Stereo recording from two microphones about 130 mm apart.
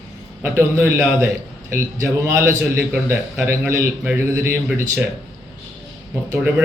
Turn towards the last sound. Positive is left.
turn(degrees=-10)  # may be behind; listen again after turning